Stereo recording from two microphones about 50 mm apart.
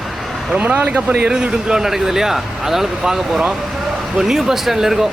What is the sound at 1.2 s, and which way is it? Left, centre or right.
Speech, centre.